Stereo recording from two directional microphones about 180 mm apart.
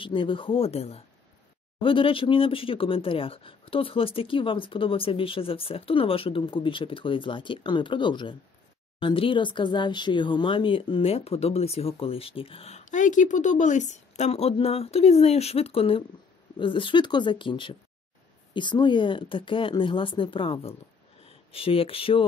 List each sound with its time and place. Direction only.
0.0 s speech: 30° left (ahead or behind)